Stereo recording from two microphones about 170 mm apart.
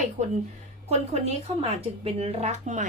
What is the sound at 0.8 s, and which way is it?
Speech, 40° right (ahead or behind).